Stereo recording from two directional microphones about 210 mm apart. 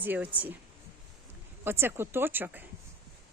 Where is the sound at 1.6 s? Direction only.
10° right (ahead or behind).